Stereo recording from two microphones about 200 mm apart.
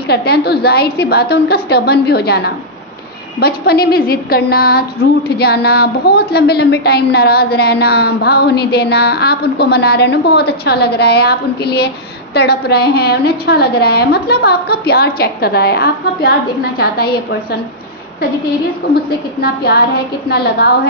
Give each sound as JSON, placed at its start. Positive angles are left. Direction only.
{"t": 0.1, "sound": "a woman's voice", "side_deg": 55}
{"t": 19.4, "sound": "a woman's voice", "side_deg": 55}